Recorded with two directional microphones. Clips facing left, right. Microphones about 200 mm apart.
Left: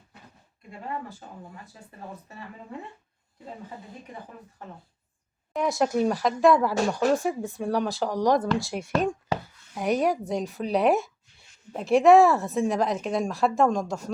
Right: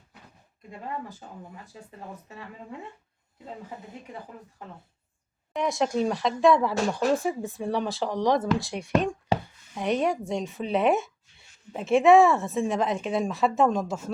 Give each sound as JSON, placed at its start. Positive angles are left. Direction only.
{"t": 5.5, "sound": "speech", "side_deg": 0}